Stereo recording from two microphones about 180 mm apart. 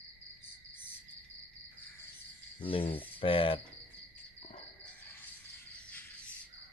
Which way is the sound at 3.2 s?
30° left (ahead or behind).